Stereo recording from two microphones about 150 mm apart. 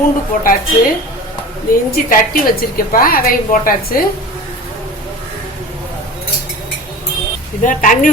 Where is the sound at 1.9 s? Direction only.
70° left (ahead or behind).